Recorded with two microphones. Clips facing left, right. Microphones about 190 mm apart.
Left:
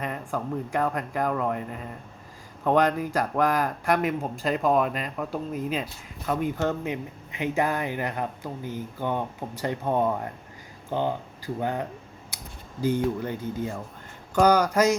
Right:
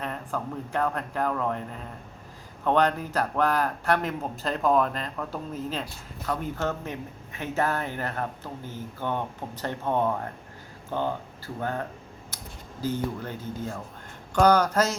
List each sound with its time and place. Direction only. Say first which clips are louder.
0.0 s speech: left 2 dB; 10° left (ahead or behind)